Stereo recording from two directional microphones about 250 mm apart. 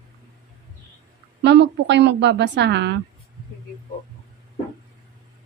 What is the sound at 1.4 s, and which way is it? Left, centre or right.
A woman's voice, right.